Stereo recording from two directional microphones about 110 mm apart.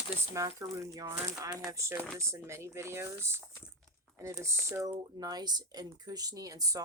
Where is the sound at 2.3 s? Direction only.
25° right (ahead or behind).